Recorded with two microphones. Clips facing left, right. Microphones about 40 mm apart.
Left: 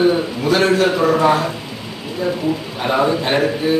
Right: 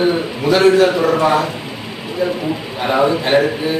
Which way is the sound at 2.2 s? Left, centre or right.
Right.